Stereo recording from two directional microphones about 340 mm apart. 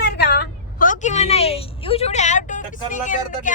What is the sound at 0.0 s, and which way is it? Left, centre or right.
A woman's voice, left.